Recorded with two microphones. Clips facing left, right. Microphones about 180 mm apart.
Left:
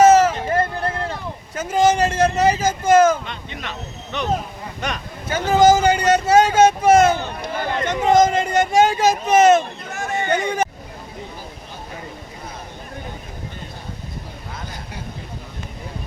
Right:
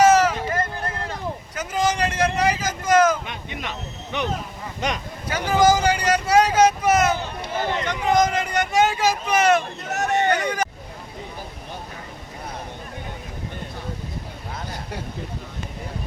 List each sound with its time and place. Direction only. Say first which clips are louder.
0.0 s a sound: left 3 dB; 25° left (ahead or behind)
1.5 s speech: left 7 dB; 25° left (ahead or behind)
3.2 s speech: even; 15° right (ahead or behind)
5.3 s speech: left 4 dB; 25° left (ahead or behind)
9.9 s a sound: right 4 dB; 70° right (ahead or behind)
10.2 s speech: left 2 dB; 25° left (ahead or behind)